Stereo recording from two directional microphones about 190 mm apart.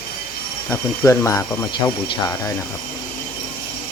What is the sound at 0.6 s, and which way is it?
Speech, 15° left (ahead or behind).